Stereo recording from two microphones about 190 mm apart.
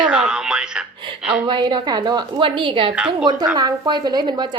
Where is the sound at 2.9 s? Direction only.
5° right (ahead or behind).